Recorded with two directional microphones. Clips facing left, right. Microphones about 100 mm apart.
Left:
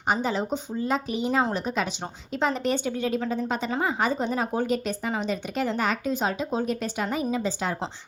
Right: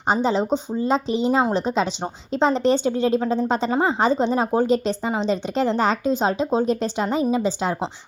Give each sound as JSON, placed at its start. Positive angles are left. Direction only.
{"t": 0.1, "sound": "a woman's voice", "side_deg": -25}